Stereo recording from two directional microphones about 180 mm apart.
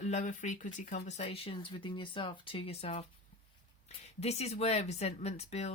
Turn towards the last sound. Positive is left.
turn(degrees=35)  # may be behind; listen again after turning